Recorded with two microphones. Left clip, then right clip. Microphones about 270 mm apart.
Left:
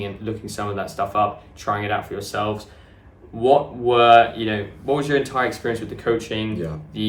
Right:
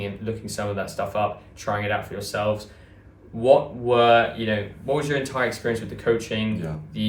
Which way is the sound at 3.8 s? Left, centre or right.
Centre.